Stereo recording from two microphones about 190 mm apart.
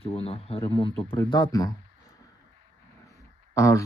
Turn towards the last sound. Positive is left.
turn(degrees=15)  # may be behind; listen again after turning